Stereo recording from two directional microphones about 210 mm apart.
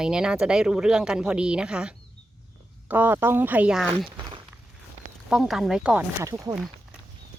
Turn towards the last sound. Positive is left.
turn(degrees=0)  # may be behind; listen again after turning